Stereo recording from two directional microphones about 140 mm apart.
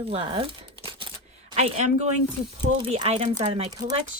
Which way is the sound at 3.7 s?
25° right (ahead or behind).